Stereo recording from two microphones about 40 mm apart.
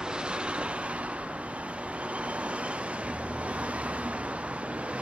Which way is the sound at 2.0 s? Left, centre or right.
Right.